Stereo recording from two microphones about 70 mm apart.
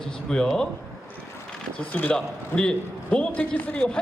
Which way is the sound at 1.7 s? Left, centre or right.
Left.